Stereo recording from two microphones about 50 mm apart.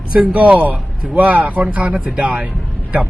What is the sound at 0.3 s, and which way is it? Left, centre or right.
A man's voice, right.